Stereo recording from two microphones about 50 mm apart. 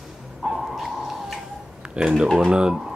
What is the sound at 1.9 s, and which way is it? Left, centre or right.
Speech, centre.